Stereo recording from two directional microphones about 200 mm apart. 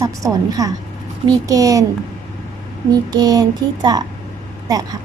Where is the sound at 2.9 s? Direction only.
20° right (ahead or behind).